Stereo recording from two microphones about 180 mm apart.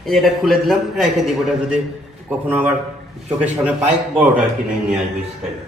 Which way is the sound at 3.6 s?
5° right (ahead or behind).